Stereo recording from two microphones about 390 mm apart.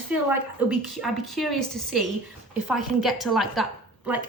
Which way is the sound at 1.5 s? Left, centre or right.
Right.